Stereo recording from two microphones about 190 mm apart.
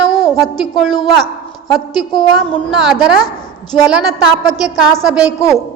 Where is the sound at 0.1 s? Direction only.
Centre (ahead or behind).